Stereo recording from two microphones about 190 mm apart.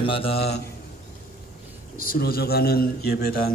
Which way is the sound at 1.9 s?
50° left (ahead or behind).